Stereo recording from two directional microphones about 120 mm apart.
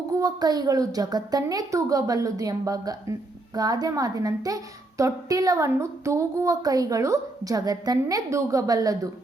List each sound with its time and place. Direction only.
0.1 s a child's voice: 30° right (ahead or behind)